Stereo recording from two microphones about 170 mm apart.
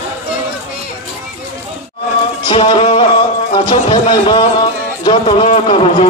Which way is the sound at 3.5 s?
30° left (ahead or behind).